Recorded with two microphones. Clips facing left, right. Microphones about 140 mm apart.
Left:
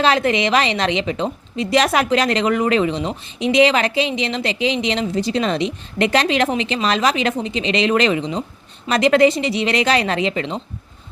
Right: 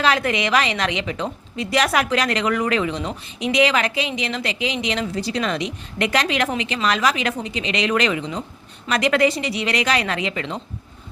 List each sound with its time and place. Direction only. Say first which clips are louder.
0.0 s a woman's voice: left 3 dB; 25° left (ahead or behind)